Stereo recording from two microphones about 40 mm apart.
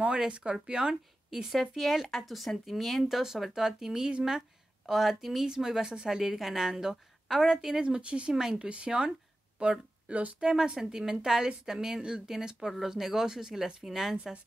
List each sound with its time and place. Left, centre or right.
0.3 s speech: right
1.3 s a woman's voice: centre
7.8 s speech: right
8.4 s a woman's voice: centre
8.6 s speech: right
9.6 s a sound: right
10.4 s a woman's voice: centre